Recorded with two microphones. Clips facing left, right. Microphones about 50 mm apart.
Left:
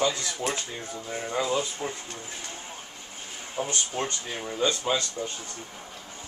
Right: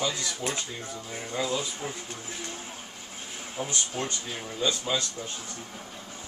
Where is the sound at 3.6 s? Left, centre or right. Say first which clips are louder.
Left 3 dB; centre.